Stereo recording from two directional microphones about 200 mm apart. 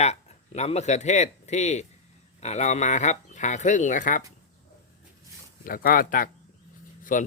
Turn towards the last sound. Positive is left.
turn(degrees=40)  # may be behind; listen again after turning